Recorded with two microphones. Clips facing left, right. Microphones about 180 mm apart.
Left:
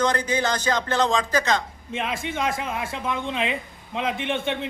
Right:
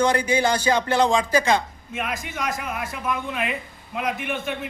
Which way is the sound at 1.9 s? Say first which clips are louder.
Left 2 dB; 25° left (ahead or behind).